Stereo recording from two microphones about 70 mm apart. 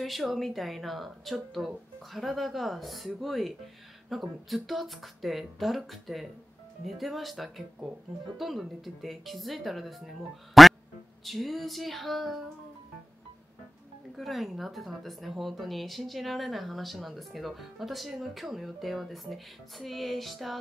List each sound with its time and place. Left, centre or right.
0.0 s speech: centre
10.6 s music: centre
11.2 s speech: centre
14.1 s speech: centre